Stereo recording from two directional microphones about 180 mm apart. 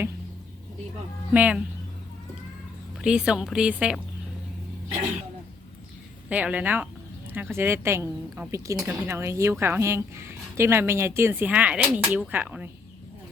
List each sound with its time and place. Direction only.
1.3 s a woman's voice: 5° right (ahead or behind)
3.0 s speech: 5° right (ahead or behind)
6.2 s a woman's voice: 10° right (ahead or behind)